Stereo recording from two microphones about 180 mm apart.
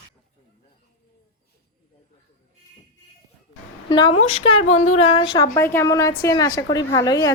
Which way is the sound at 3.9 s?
25° left (ahead or behind).